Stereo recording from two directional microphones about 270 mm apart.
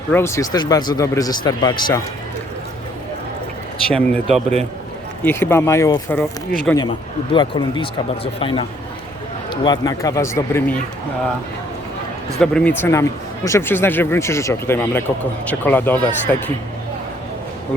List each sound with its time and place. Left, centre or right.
0.1 s speech: centre
3.9 s speech: centre
12.4 s speech: centre